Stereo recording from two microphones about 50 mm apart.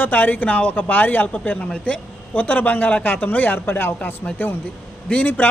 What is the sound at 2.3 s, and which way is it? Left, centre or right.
Speech, left.